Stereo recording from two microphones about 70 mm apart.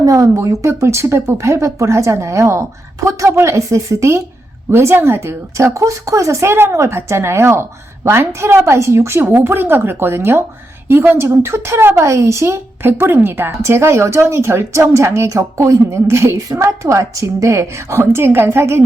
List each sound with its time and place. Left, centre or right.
0.0 s a woman's voice: right